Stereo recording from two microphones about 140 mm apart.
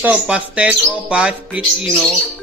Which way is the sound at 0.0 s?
10° right (ahead or behind).